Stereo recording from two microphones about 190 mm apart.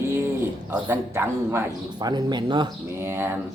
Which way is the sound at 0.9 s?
15° right (ahead or behind).